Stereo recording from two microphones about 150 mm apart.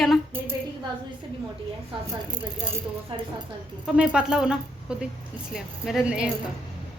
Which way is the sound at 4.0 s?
5° right (ahead or behind).